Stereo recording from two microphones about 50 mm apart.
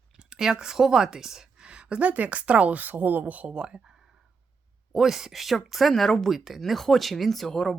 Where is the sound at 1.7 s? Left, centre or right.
Right.